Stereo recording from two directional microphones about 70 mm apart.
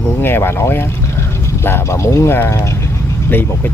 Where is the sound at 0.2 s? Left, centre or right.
Left.